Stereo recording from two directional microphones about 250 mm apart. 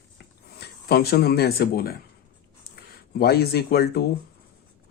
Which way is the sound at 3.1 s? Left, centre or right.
Left.